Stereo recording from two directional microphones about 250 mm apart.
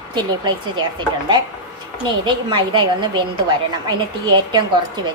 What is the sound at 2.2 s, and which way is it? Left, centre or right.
A woman's voice, centre.